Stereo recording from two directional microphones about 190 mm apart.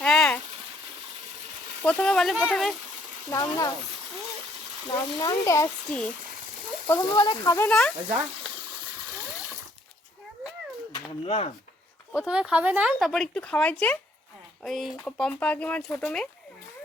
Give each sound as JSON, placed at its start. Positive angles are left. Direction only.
{"t": 0.0, "sound": "a sound", "side_deg": 5}
{"t": 1.8, "sound": "speech", "side_deg": 5}
{"t": 3.3, "sound": "speech", "side_deg": 20}
{"t": 4.9, "sound": "speech", "side_deg": 15}
{"t": 7.7, "sound": "speech", "side_deg": 5}
{"t": 10.9, "sound": "speech", "side_deg": 30}
{"t": 12.1, "sound": "speech", "side_deg": -5}